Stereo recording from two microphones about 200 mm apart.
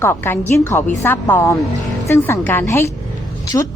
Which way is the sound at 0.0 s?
10° left (ahead or behind).